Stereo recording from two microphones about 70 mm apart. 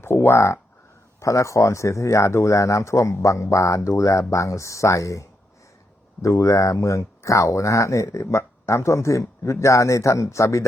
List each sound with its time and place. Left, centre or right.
0.0 s speech: left